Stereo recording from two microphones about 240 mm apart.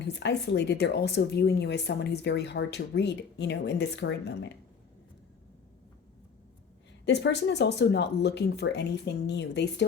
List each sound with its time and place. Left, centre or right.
0.0 s speech: left
7.0 s speech: left